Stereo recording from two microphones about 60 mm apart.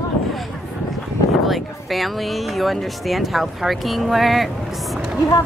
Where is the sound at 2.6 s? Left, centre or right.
Centre.